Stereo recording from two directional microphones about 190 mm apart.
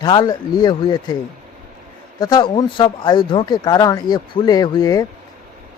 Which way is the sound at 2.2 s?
20° left (ahead or behind).